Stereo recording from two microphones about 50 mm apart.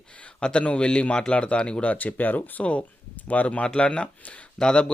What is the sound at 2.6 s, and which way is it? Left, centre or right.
Speech, left.